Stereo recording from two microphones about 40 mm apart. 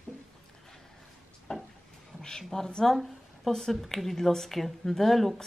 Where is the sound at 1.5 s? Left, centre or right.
Centre.